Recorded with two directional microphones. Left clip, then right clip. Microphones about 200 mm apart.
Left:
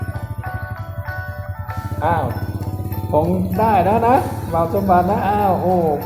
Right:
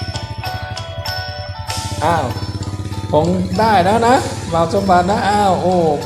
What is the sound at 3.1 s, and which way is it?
Music, 30° right (ahead or behind).